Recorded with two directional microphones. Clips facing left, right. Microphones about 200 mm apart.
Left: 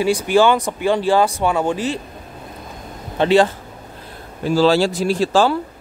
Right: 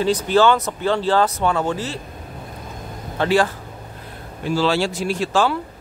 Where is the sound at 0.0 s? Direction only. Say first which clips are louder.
Left 1 dB; 10° left (ahead or behind).